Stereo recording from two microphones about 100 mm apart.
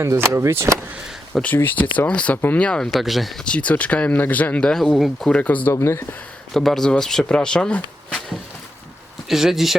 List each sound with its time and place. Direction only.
0.0 s speech: 25° right (ahead or behind)
1.3 s speech: 10° left (ahead or behind)
5.3 s speech: 15° left (ahead or behind)
5.7 s speech: 30° left (ahead or behind)
6.5 s speech: 5° left (ahead or behind)
9.3 s speech: 5° right (ahead or behind)